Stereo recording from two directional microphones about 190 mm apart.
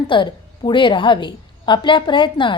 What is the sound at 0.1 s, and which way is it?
A woman's voice, 25° left (ahead or behind).